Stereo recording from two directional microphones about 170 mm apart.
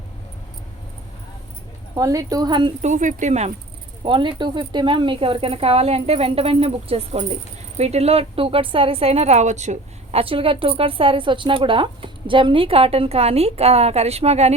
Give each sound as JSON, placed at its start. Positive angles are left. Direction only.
{"t": 2.0, "sound": "speech", "side_deg": -20}
{"t": 2.8, "sound": "speech", "side_deg": -45}
{"t": 4.0, "sound": "a woman's voice", "side_deg": -30}